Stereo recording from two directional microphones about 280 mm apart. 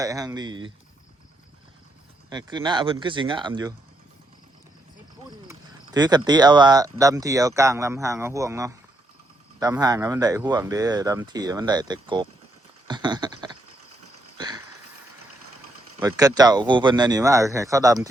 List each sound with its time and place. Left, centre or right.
0.0 s speech: centre
2.3 s speech: centre
5.5 s speech: centre
14.3 s a sound: centre
16.0 s speech: centre